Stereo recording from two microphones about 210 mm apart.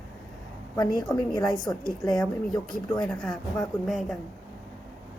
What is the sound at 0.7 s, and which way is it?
A woman's voice, 20° left (ahead or behind).